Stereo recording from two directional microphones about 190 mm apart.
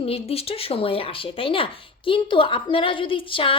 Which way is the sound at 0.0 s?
30° left (ahead or behind).